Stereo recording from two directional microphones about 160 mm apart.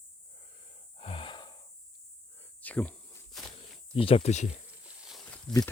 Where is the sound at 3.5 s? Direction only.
35° left (ahead or behind).